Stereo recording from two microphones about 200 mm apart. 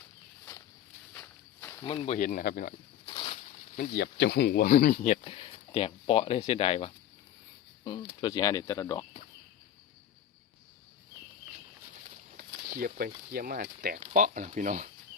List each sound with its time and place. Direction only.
1.1 s walk: 15° left (ahead or behind)
1.9 s speech: 25° left (ahead or behind)
2.1 s speech: 45° left (ahead or behind)
3.1 s a sound: 30° left (ahead or behind)
3.8 s speech: 50° left (ahead or behind)
5.2 s speech: 30° left (ahead or behind)
12.1 s speech: 45° right (ahead or behind)